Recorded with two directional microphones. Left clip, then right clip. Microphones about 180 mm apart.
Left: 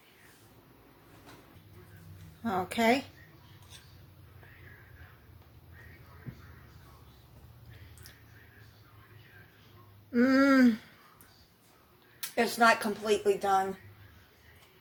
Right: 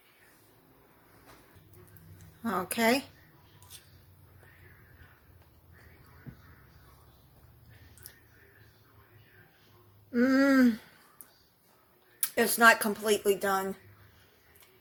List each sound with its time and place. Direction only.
2.4 s a woman's voice: 30° right (ahead or behind)
10.1 s a sound: 10° right (ahead or behind)
12.3 s speech: 40° right (ahead or behind)